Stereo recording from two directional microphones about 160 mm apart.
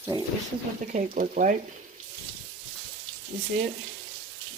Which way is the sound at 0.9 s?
50° right (ahead or behind).